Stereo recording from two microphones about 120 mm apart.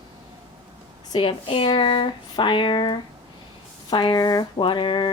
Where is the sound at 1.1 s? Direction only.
50° left (ahead or behind).